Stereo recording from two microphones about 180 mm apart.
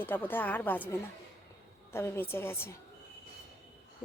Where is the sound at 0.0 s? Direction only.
10° left (ahead or behind).